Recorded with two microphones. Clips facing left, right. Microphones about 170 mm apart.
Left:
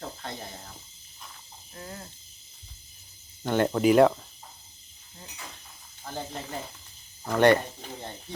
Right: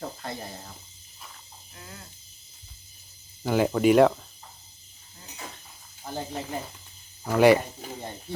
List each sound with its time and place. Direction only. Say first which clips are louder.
0.0 s speech: right 2 dB; centre (ahead or behind)
1.7 s cricket: left 5 dB; 35° left (ahead or behind)
3.4 s speech: right 1 dB; 5° right (ahead or behind)
6.1 s speech: right 3 dB; 10° right (ahead or behind)